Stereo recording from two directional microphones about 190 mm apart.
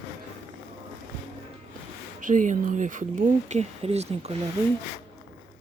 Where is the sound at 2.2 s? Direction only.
45° right (ahead or behind).